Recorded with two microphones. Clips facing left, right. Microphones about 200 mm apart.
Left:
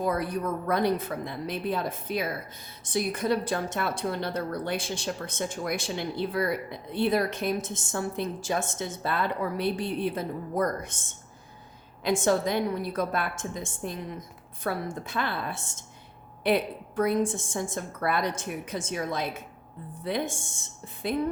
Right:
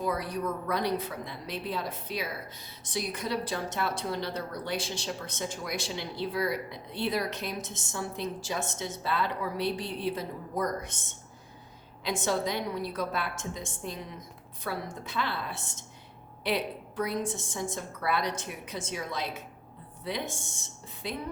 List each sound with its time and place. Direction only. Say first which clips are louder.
0.0 s a woman's voice: left 3 dB; 50° left (ahead or behind)
12.0 s a woman's voice: left 5 dB; 50° left (ahead or behind)